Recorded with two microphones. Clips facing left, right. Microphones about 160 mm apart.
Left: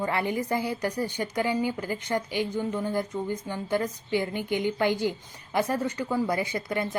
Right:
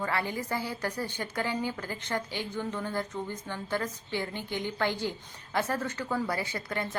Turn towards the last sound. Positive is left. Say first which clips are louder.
# left 5 dB
turn(degrees=15)  # may be behind; listen again after turning